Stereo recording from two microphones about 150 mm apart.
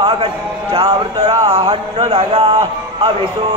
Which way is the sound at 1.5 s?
40° right (ahead or behind).